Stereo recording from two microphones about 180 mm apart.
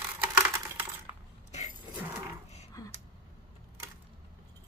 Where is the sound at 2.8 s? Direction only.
20° left (ahead or behind).